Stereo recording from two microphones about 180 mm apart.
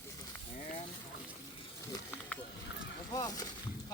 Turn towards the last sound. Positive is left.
turn(degrees=20)  # may be behind; listen again after turning